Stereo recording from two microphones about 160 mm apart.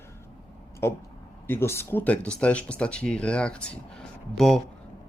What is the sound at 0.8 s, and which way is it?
Speech, 15° left (ahead or behind).